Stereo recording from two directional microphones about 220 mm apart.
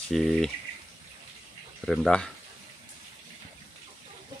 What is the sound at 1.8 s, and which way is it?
Speech, centre (ahead or behind).